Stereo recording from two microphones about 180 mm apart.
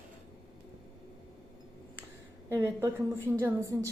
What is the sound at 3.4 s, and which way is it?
Speech, 20° right (ahead or behind).